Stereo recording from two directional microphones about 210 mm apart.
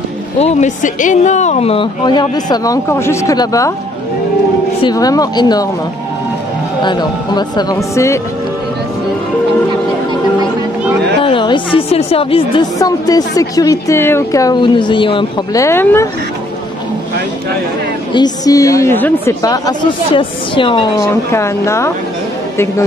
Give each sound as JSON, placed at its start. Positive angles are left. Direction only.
{"t": 0.4, "sound": "speech", "side_deg": 35}
{"t": 4.8, "sound": "a woman's voice", "side_deg": 15}
{"t": 6.8, "sound": "speech", "side_deg": 20}
{"t": 11.2, "sound": "a woman's voice", "side_deg": 25}
{"t": 18.1, "sound": "a woman's voice", "side_deg": 20}